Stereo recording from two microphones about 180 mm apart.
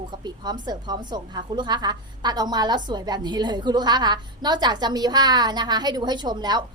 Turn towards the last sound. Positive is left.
turn(degrees=-25)  # may be behind; listen again after turning